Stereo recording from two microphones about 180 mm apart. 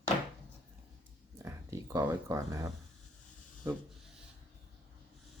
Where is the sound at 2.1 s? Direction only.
15° right (ahead or behind).